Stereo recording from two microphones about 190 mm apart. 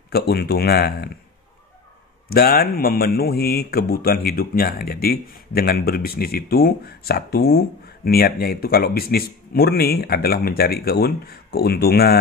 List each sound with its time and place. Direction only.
0.1 s speech: 55° left (ahead or behind)
2.2 s speech: 55° left (ahead or behind)